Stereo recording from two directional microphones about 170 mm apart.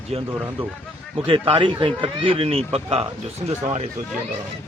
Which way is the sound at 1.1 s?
35° right (ahead or behind).